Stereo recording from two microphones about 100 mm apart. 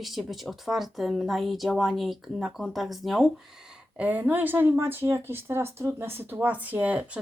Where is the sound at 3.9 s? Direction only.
15° right (ahead or behind).